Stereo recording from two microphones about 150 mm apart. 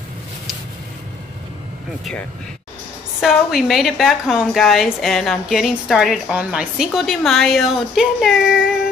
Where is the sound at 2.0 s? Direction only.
5° left (ahead or behind).